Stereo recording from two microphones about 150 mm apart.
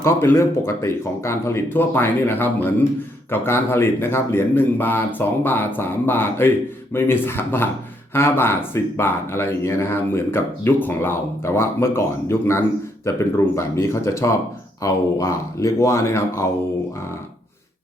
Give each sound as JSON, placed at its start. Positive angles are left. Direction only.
{"t": 0.0, "sound": "speech", "side_deg": 15}